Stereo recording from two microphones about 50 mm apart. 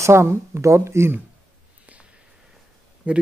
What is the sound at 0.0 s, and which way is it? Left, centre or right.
Speech, right.